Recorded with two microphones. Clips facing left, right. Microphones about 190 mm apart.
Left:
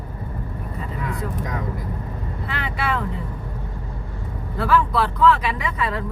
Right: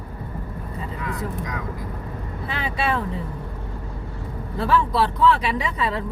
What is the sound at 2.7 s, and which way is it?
Vehicle, 30° right (ahead or behind).